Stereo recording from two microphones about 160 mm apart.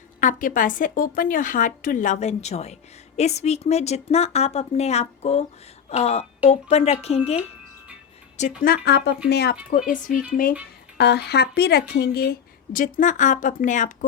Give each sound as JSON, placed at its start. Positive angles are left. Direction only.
{"t": 0.2, "sound": "a woman's voice", "side_deg": 55}
{"t": 8.4, "sound": "speech", "side_deg": 55}
{"t": 9.6, "sound": "speech", "side_deg": 60}
{"t": 10.9, "sound": "speech", "side_deg": 90}